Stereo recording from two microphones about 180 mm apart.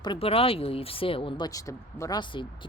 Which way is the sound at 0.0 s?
30° left (ahead or behind).